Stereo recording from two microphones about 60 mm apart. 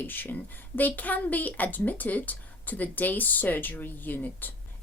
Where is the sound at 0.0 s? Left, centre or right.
Left.